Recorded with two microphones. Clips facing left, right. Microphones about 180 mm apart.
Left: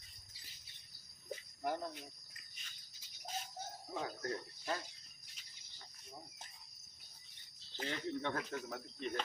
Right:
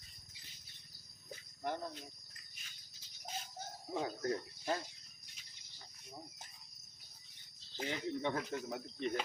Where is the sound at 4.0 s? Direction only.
30° right (ahead or behind).